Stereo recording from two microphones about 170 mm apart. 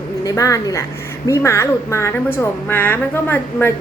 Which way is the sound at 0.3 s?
20° left (ahead or behind).